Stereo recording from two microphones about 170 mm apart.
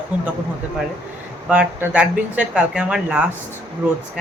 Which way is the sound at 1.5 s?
10° right (ahead or behind).